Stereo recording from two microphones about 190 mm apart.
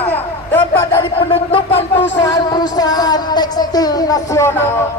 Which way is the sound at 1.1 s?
30° left (ahead or behind).